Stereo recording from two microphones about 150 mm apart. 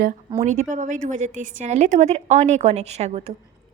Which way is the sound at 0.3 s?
55° right (ahead or behind).